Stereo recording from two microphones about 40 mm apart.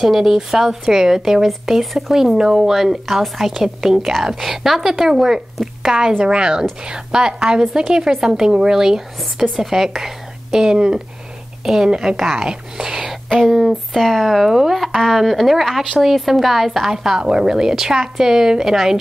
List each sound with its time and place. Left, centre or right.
0.0 s a woman's voice: centre
5.9 s a woman's voice: centre
12.2 s a woman's voice: centre